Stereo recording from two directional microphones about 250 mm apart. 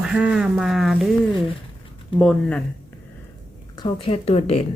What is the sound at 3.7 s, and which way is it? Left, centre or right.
Speech, left.